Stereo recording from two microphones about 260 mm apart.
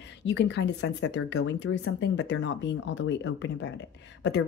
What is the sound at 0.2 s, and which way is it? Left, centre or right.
Speech, left.